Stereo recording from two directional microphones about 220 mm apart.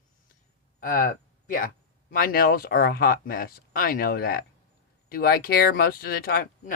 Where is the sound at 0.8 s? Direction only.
35° left (ahead or behind).